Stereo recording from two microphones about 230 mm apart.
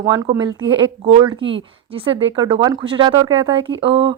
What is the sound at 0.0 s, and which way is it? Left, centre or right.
Speech, centre.